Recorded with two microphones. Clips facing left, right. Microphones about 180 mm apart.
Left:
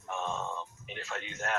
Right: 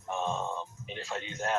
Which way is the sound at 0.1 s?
30° right (ahead or behind).